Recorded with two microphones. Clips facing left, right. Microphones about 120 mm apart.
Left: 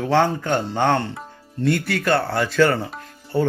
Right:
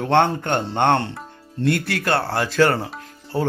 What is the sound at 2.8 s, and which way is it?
Speech, 5° right (ahead or behind).